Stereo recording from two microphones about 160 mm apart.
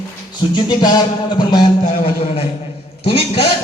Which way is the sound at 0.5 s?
25° left (ahead or behind).